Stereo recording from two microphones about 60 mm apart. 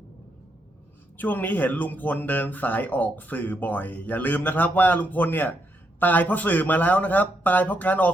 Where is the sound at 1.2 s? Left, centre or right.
Left.